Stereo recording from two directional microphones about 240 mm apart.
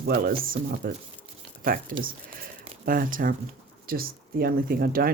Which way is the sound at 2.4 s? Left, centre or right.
Right.